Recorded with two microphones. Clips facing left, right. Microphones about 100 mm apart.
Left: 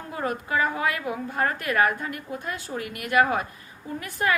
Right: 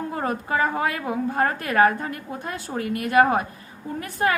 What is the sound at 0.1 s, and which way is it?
A woman's voice, 35° right (ahead or behind).